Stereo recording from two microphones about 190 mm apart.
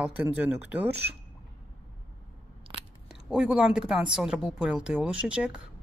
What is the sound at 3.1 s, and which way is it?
Speech, 5° right (ahead or behind).